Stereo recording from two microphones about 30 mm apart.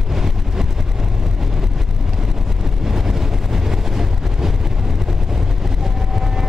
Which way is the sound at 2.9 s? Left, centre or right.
Centre.